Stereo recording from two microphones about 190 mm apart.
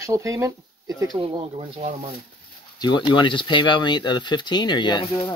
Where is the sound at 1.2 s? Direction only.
30° right (ahead or behind).